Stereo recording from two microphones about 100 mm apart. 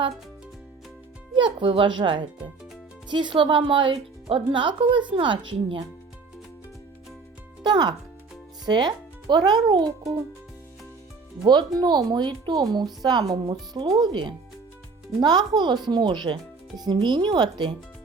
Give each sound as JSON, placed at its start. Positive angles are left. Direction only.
{"t": 1.4, "sound": "speech", "side_deg": -55}
{"t": 7.6, "sound": "a child's voice", "side_deg": -45}
{"t": 11.8, "sound": "speech", "side_deg": -45}